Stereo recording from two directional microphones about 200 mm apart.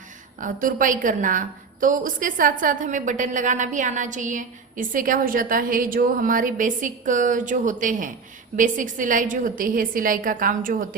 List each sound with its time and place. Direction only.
0.3 s a woman's voice: 40° right (ahead or behind)